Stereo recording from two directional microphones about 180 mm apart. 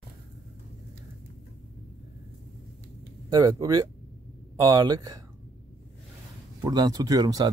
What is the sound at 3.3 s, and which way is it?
Speech, 20° right (ahead or behind).